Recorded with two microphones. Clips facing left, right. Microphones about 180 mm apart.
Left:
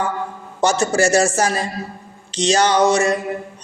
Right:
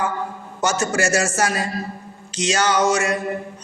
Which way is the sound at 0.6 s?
35° left (ahead or behind).